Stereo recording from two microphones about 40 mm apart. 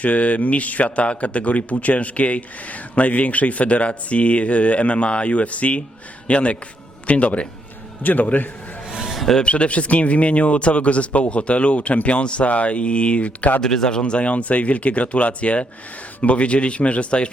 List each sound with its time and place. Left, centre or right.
0.0 s a man's voice: left
8.0 s a man's voice: left
9.1 s music: centre
9.4 s a man's voice: left
13.6 s speech: centre
14.0 s a man's voice: left